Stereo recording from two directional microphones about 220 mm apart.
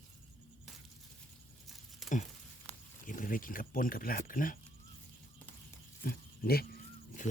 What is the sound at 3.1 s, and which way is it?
Speech, 35° left (ahead or behind).